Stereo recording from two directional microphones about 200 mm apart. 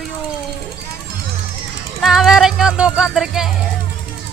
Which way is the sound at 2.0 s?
Centre (ahead or behind).